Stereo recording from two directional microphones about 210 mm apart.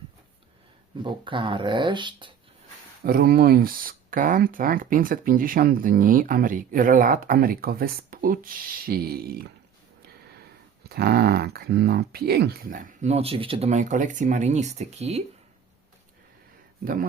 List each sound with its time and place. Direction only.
1.0 s speech: 25° right (ahead or behind)
3.0 s speech: 45° right (ahead or behind)
10.8 s speech: 50° right (ahead or behind); by 15.2 s 30° right (ahead or behind)
16.8 s speech: 45° right (ahead or behind)